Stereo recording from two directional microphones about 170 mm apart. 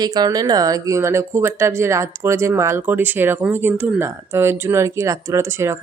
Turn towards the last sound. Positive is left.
turn(degrees=-15)  # may be behind; listen again after turning